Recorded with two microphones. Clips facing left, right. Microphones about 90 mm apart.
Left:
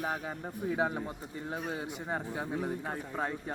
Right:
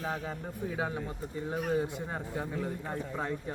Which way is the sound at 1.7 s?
15° left (ahead or behind).